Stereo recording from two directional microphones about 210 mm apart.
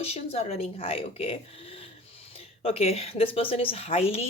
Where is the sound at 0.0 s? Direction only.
30° left (ahead or behind).